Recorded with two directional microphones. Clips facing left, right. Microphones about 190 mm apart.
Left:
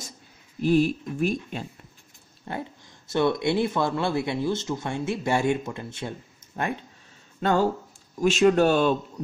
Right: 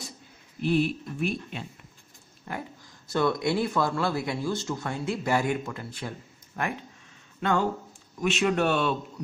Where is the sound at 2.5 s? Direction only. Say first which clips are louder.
Left 3 dB; 25° left (ahead or behind).